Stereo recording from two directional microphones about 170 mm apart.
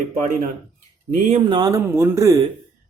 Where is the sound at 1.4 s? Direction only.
25° right (ahead or behind).